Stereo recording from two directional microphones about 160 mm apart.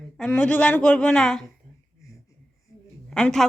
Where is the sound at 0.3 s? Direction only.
10° left (ahead or behind).